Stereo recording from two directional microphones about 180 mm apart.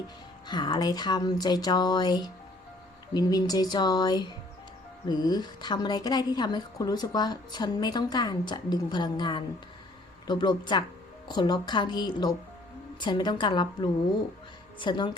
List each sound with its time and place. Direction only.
0.4 s a woman's voice: 25° left (ahead or behind)